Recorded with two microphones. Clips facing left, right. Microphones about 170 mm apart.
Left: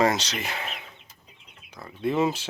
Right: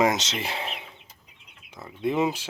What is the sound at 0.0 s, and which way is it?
Speech, 20° right (ahead or behind).